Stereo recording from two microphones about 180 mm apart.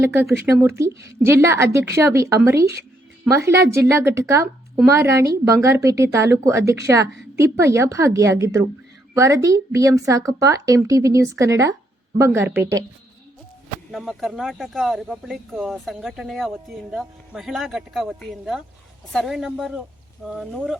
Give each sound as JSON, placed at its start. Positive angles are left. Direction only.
{"t": 0.0, "sound": "a woman's voice", "side_deg": -15}
{"t": 13.9, "sound": "speech", "side_deg": 0}